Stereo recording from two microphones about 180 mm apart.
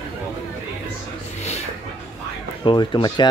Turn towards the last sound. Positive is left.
turn(degrees=25)  # may be behind; listen again after turning